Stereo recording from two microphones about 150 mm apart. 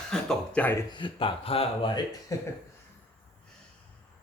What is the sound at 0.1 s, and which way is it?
Speech, 5° left (ahead or behind).